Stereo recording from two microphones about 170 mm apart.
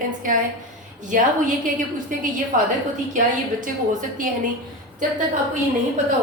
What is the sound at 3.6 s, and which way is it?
Speech, 50° right (ahead or behind).